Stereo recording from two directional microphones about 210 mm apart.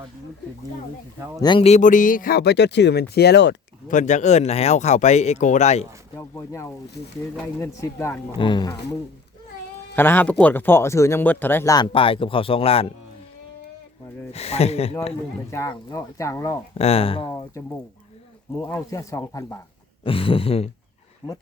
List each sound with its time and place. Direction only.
1.4 s speech: 25° left (ahead or behind); by 3.9 s 55° left (ahead or behind)
3.9 s speech: 35° left (ahead or behind)
6.1 s speech: 15° left (ahead or behind)
14.3 s speech: 30° left (ahead or behind)
15.4 s speech: 15° left (ahead or behind)
16.7 s speech: 30° left (ahead or behind)
18.6 s speech: 15° left (ahead or behind)
20.1 s speech: 25° left (ahead or behind)